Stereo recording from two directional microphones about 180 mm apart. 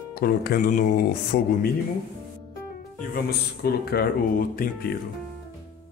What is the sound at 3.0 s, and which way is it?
Speech, 60° left (ahead or behind).